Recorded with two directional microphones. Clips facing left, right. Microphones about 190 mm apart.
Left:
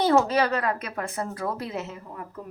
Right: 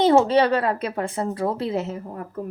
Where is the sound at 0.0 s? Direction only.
25° right (ahead or behind).